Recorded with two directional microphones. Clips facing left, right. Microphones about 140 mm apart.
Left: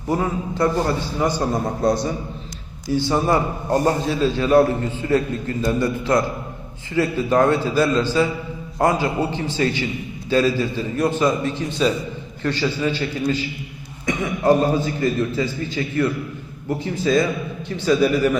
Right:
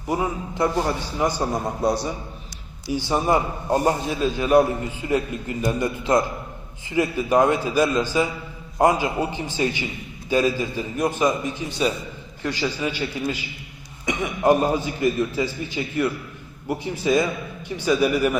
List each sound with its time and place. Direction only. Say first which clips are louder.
0.1 s a man's voice: left 3 dB; 15° right (ahead or behind)
2.9 s a man's voice: left 2 dB; 15° right (ahead or behind)